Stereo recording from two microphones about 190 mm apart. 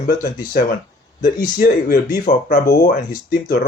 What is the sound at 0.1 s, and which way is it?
Speech, 50° left (ahead or behind).